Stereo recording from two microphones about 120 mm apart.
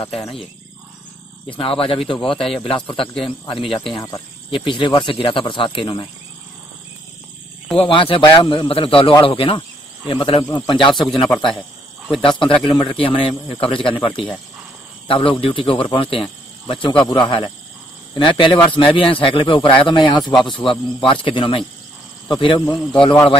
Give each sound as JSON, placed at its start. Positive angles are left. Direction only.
{"t": 1.5, "sound": "speech", "side_deg": 50}
{"t": 3.6, "sound": "speech", "side_deg": 0}
{"t": 3.9, "sound": "speech", "side_deg": 30}
{"t": 4.5, "sound": "speech", "side_deg": 45}
{"t": 7.7, "sound": "speech", "side_deg": 50}
{"t": 10.4, "sound": "speech", "side_deg": 40}
{"t": 12.2, "sound": "speech", "side_deg": 45}
{"t": 22.9, "sound": "speech", "side_deg": 35}